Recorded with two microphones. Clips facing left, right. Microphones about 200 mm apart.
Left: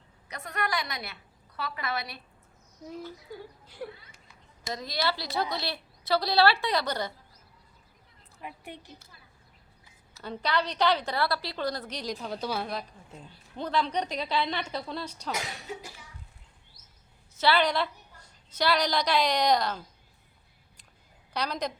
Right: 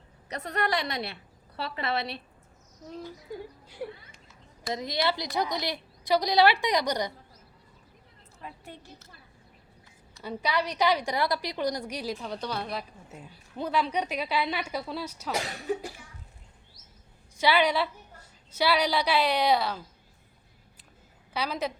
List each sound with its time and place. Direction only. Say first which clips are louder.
0.3 s a woman's voice: right 4 dB; 35° right (ahead or behind)
4.7 s a woman's voice: right 3 dB; 20° right (ahead or behind)
8.4 s a woman's voice: left 2 dB; 15° left (ahead or behind)
10.2 s a woman's voice: even; 10° right (ahead or behind)
15.3 s a woman's voice: right 3 dB; 35° right (ahead or behind)
17.3 s a woman's voice: right 1 dB; 10° right (ahead or behind)
21.3 s a woman's voice: right 1 dB; 5° right (ahead or behind)